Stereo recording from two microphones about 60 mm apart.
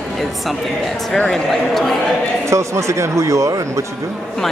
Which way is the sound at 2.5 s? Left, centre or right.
Right.